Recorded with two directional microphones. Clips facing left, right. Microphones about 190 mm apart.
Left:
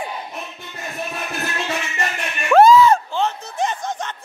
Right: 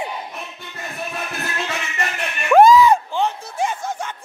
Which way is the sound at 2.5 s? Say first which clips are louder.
Even; 15° right (ahead or behind).